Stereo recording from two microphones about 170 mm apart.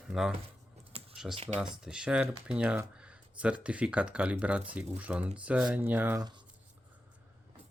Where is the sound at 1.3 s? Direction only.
35° right (ahead or behind).